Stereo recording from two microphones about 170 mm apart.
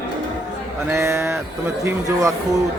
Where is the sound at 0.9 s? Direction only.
15° right (ahead or behind).